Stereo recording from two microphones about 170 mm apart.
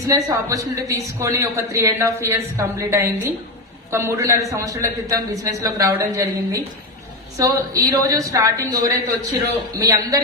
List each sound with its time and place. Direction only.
0.1 s a man's voice: 20° right (ahead or behind)